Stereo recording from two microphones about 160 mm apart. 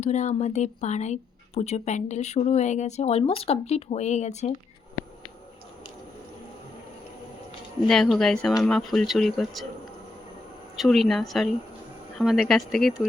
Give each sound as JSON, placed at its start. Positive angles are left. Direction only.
{"t": 0.0, "sound": "speech", "side_deg": 45}
{"t": 7.9, "sound": "speech", "side_deg": 0}
{"t": 10.8, "sound": "speech", "side_deg": 0}